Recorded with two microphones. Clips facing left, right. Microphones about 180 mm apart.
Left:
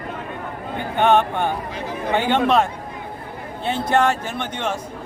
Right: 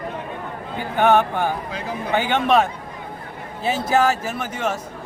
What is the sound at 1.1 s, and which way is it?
Speech, 20° left (ahead or behind).